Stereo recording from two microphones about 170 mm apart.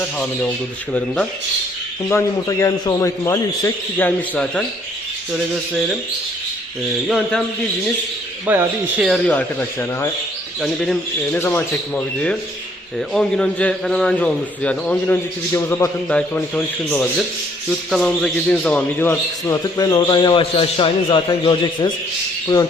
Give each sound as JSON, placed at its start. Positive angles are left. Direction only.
{"t": 0.9, "sound": "a man's voice", "side_deg": 10}
{"t": 7.1, "sound": "speech", "side_deg": 5}
{"t": 8.4, "sound": "a man's voice", "side_deg": -10}